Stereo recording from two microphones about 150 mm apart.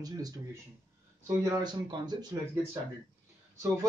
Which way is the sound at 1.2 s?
25° right (ahead or behind).